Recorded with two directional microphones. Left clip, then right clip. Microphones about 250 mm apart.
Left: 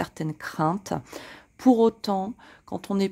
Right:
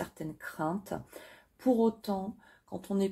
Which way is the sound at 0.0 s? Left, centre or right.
Left.